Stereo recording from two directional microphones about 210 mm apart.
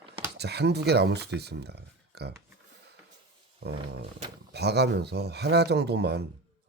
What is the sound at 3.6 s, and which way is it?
Roaring cats, 50° right (ahead or behind).